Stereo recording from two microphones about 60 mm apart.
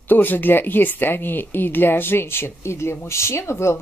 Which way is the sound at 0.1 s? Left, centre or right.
Left.